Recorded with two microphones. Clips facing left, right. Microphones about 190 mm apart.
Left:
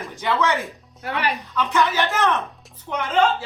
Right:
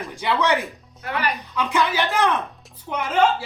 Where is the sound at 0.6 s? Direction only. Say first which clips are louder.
Left 1 dB; centre (ahead or behind).